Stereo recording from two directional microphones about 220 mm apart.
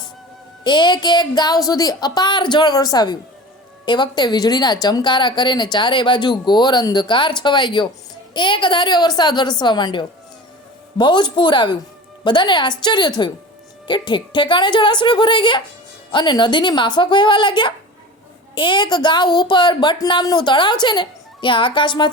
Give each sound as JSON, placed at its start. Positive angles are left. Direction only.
{"t": 0.6, "sound": "a woman's voice", "side_deg": 20}